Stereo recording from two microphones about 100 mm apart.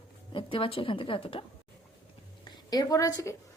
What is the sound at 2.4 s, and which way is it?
Speech, 40° left (ahead or behind).